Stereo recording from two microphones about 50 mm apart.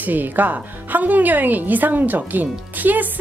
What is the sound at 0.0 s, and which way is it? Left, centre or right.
A woman's voice, right.